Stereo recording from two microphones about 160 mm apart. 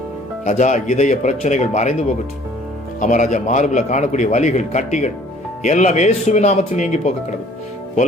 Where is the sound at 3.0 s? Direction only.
50° left (ahead or behind).